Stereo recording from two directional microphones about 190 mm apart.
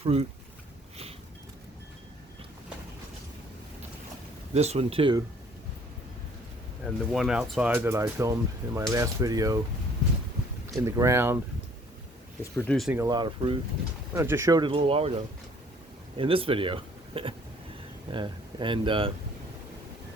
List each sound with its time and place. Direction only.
0.0 s speech: 30° right (ahead or behind)
4.5 s speech: 35° right (ahead or behind)
7.1 s speech: 5° right (ahead or behind); by 9.6 s 20° right (ahead or behind)
10.8 s speech: 15° right (ahead or behind)
12.4 s speech: 5° left (ahead or behind)
12.9 s speech: 20° right (ahead or behind)
14.1 s speech: 15° right (ahead or behind)